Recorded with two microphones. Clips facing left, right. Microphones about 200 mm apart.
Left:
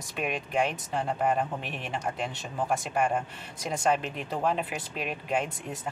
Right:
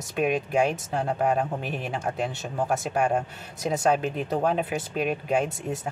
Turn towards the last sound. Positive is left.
turn(degrees=-45)  # may be behind; listen again after turning